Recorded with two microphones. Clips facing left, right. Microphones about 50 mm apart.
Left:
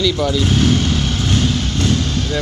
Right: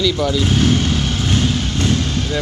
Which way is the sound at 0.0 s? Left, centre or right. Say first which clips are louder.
Even; centre.